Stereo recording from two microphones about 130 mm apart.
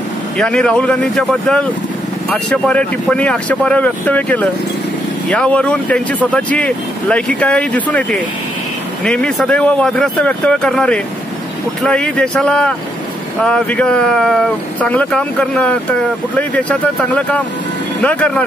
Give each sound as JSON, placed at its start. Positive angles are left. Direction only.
{"t": 0.4, "sound": "speech", "side_deg": 5}